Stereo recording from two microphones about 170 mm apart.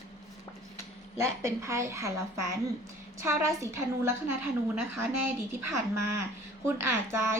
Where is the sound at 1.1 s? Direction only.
15° right (ahead or behind).